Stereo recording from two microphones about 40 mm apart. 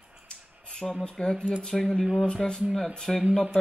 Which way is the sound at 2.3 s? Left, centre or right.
Left.